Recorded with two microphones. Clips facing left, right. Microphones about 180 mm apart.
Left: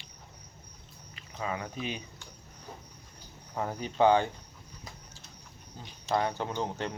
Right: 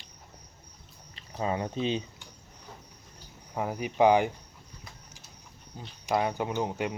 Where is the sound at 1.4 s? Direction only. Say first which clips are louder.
Right 6 dB; 30° right (ahead or behind).